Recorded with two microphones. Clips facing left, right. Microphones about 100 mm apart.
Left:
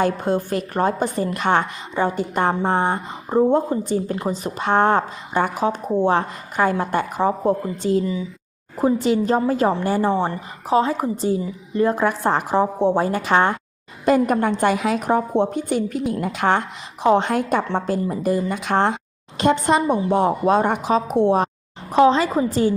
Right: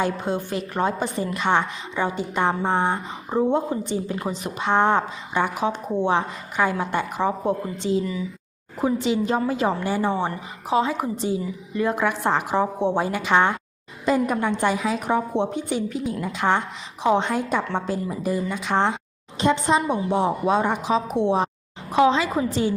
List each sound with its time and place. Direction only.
0.0 s speech: 50° left (ahead or behind)
3.5 s a woman's voice: 45° left (ahead or behind)
14.0 s speech: 55° left (ahead or behind)
15.0 s a woman's voice: 45° left (ahead or behind)
21.9 s a woman's voice: 35° left (ahead or behind)